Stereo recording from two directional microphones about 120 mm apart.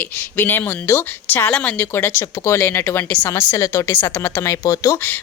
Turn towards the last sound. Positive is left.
turn(degrees=30)  # may be behind; listen again after turning